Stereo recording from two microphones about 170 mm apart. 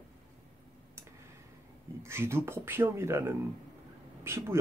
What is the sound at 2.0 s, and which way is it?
Speech, 15° right (ahead or behind).